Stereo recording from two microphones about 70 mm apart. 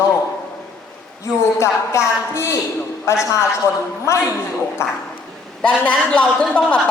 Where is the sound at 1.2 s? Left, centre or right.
Left.